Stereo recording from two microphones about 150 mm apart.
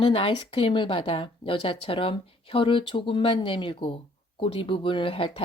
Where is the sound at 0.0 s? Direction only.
35° left (ahead or behind).